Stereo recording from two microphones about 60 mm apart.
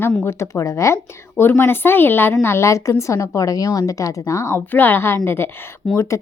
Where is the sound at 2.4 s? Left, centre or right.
Left.